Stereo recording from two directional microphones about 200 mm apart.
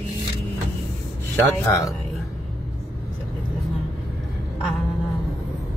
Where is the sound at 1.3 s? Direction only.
15° left (ahead or behind).